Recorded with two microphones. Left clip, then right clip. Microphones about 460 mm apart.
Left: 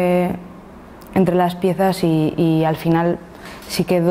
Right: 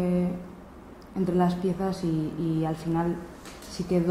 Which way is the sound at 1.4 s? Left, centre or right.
Left.